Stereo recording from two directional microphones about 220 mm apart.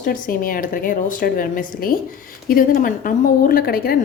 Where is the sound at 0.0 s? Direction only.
40° left (ahead or behind).